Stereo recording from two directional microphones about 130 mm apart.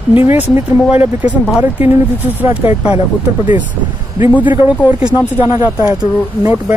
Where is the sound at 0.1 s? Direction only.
15° right (ahead or behind).